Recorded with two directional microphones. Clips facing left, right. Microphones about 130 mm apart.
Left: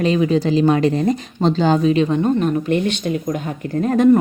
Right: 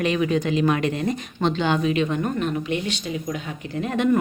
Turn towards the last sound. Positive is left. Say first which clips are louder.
# left 8 dB
turn(degrees=40)  # may be behind; listen again after turning